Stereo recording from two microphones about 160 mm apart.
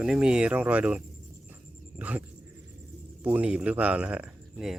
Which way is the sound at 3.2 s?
10° right (ahead or behind).